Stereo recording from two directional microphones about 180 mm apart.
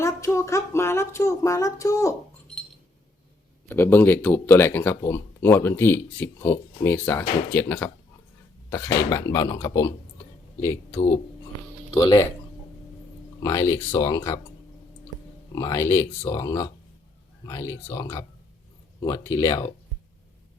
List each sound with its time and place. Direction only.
0.0 s speech: 15° left (ahead or behind)
3.7 s speech: 10° left (ahead or behind)
12.0 s speech: 20° left (ahead or behind)
13.4 s speech: 20° left (ahead or behind)
15.5 s speech: 20° left (ahead or behind)